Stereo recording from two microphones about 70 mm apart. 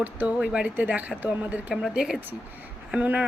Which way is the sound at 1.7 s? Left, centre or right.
Centre.